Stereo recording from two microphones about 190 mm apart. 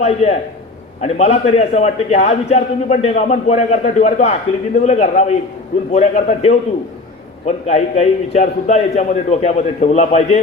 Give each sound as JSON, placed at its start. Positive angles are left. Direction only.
{"t": 0.0, "sound": "a man's voice", "side_deg": 35}